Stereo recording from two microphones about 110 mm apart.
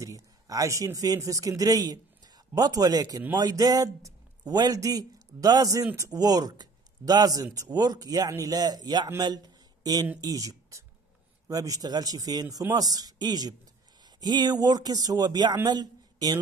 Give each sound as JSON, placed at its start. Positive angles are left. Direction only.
{"t": 0.0, "sound": "a man's voice", "side_deg": -30}
{"t": 9.2, "sound": "a sound", "side_deg": -40}
{"t": 10.2, "sound": "speech", "side_deg": -35}